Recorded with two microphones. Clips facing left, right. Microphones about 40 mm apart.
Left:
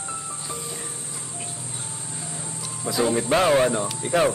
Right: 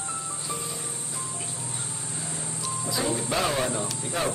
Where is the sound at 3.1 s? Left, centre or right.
Left.